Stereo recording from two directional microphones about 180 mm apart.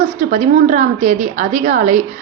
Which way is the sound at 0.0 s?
45° right (ahead or behind).